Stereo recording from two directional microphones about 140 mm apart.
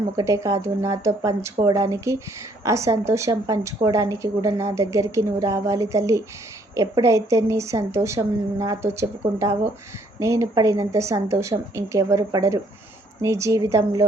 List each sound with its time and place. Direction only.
0.2 s a woman's voice: 20° right (ahead or behind)